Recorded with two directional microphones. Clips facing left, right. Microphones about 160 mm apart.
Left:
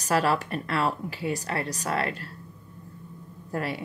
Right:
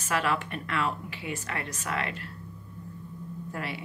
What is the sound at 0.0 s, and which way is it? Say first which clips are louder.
Speech: left 4 dB; 35° left (ahead or behind).